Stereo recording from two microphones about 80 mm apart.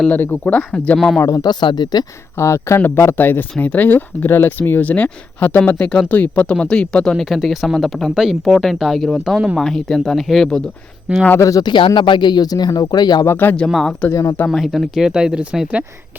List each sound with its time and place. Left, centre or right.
0.1 s speech: left
0.9 s speech: centre
1.2 s speech: left
1.6 s speech: left
2.4 s speech: left; by 10.6 s centre
11.3 s speech: left
11.6 s speech: left
13.2 s speech: left
13.7 s speech: centre
14.1 s speech: left
14.5 s speech: centre